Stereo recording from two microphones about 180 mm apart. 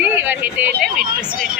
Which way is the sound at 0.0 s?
10° right (ahead or behind).